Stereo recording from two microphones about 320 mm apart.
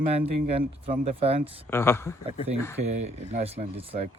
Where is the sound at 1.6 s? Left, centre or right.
Centre.